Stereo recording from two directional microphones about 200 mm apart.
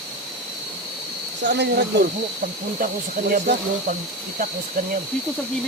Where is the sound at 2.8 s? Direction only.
40° right (ahead or behind).